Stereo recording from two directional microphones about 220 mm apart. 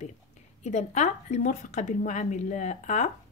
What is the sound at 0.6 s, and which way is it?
Speech, 30° left (ahead or behind).